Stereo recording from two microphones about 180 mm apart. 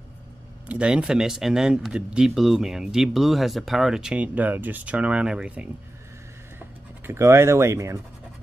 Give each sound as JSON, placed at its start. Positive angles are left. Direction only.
{"t": 0.7, "sound": "speech", "side_deg": -5}
{"t": 7.1, "sound": "speech", "side_deg": -15}